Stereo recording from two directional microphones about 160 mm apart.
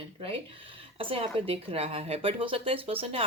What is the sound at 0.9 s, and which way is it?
Speech, 35° right (ahead or behind).